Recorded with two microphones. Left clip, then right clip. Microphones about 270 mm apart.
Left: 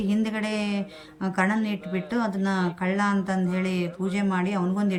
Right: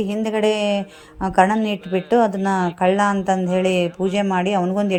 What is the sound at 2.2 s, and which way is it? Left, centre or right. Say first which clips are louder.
Speech: right 9 dB; right.